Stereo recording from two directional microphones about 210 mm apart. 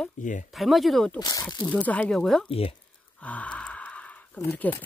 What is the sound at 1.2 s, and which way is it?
Speech, 20° left (ahead or behind).